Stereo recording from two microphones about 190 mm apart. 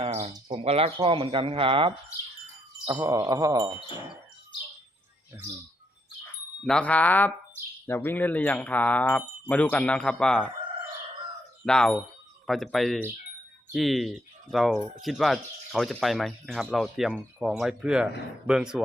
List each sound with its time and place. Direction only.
0.0 s bird: 35° right (ahead or behind)
0.3 s speech: 25° right (ahead or behind)
2.8 s speech: 15° right (ahead or behind)
6.6 s speech: 5° left (ahead or behind)
11.6 s speech: 5° left (ahead or behind)